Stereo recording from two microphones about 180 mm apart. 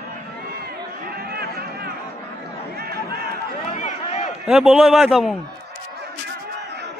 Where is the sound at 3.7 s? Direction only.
35° left (ahead or behind).